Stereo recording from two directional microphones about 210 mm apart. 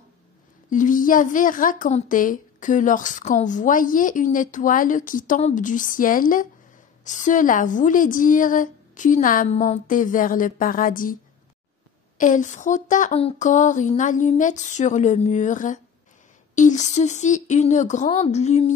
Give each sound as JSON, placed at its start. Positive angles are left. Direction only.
{"t": 0.7, "sound": "a woman's voice", "side_deg": 40}
{"t": 12.2, "sound": "a woman's voice", "side_deg": 35}